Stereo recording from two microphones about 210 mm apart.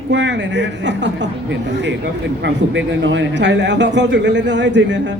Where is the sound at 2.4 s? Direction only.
60° right (ahead or behind).